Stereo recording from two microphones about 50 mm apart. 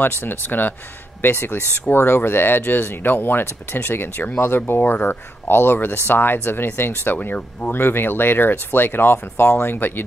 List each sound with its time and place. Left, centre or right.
0.0 s speech: left